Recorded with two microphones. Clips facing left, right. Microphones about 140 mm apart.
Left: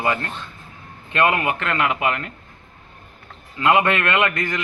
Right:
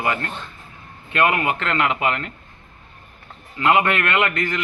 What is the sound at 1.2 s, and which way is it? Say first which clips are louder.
Speech: even; 20° left (ahead or behind).